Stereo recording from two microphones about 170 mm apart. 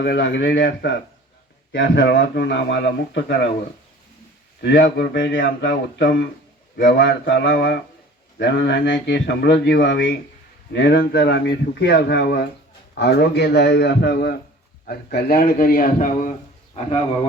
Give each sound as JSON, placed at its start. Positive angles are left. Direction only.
{"t": 0.0, "sound": "speech", "side_deg": 90}
{"t": 4.6, "sound": "speech", "side_deg": 90}
{"t": 14.8, "sound": "a man's voice", "side_deg": 65}